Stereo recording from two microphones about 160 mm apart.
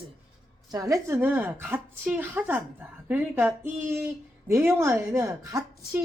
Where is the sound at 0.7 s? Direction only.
20° right (ahead or behind).